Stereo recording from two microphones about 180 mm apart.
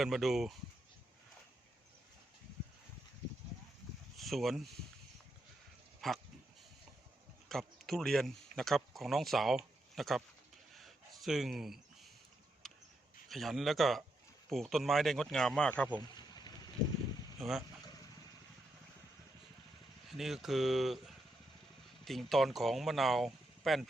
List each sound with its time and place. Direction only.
0.0 s speech: centre (ahead or behind)
4.2 s speech: centre (ahead or behind)
6.0 s speech: centre (ahead or behind)
7.4 s speech: centre (ahead or behind)
10.8 s a sound: centre (ahead or behind)
13.2 s speech: centre (ahead or behind)
16.1 s a sound: 20° left (ahead or behind)
20.1 s speech: centre (ahead or behind)